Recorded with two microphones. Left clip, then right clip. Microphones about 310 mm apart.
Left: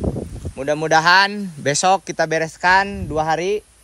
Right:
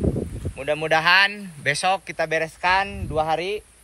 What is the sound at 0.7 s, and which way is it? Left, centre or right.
Speech, left.